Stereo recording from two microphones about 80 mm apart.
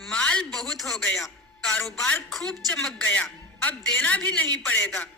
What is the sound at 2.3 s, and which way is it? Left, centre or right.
Speech, centre.